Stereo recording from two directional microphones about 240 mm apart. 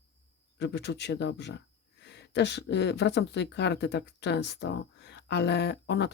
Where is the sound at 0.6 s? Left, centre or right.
Left.